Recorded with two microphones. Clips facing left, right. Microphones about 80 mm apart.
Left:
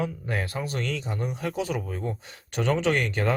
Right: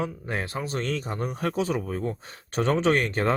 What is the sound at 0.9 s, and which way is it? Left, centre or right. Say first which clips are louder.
Speech: right 1 dB; right.